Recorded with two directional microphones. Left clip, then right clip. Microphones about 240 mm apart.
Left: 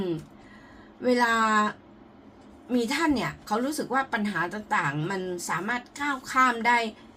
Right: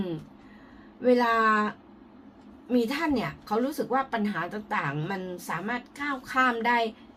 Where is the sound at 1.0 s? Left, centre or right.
Centre.